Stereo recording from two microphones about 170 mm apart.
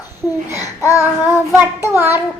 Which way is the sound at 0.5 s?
20° left (ahead or behind).